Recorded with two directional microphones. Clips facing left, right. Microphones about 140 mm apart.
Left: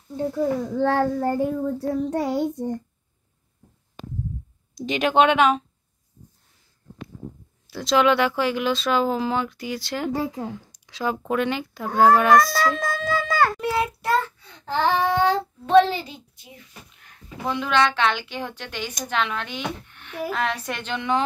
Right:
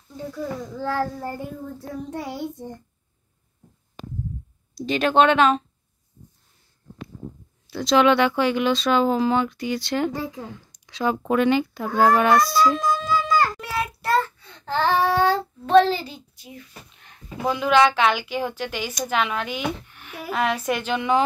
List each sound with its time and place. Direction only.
0.3 s child singing: 55° left (ahead or behind)
4.7 s speech: 15° left (ahead or behind)
7.6 s speech: centre (ahead or behind)
12.6 s baby cry: 55° left (ahead or behind)
13.6 s child singing: 25° left (ahead or behind)
17.5 s speech: 10° right (ahead or behind)